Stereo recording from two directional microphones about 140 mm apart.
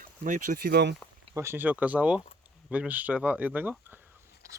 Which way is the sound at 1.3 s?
15° right (ahead or behind).